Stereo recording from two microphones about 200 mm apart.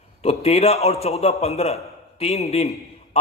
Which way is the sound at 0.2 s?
30° left (ahead or behind).